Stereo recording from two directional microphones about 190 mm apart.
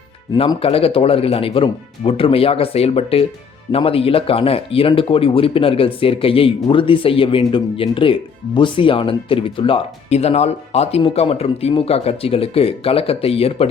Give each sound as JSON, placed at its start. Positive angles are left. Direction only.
{"t": 0.3, "sound": "speech", "side_deg": 30}